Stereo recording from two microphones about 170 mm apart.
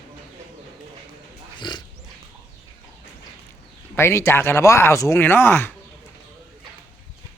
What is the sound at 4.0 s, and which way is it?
A man's voice, 15° left (ahead or behind).